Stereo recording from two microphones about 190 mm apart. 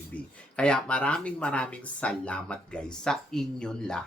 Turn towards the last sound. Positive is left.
turn(degrees=5)  # may be behind; listen again after turning